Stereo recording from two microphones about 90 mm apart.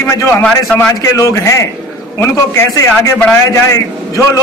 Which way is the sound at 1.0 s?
35° left (ahead or behind).